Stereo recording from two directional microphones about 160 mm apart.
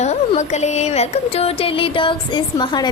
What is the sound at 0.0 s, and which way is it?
A woman's voice, 45° left (ahead or behind).